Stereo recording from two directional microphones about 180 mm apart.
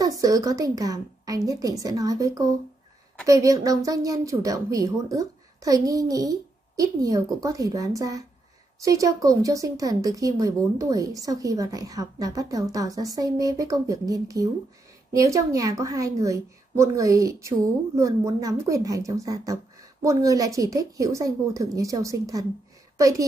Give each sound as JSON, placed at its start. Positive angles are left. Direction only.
{"t": 0.0, "sound": "a woman's voice", "side_deg": -20}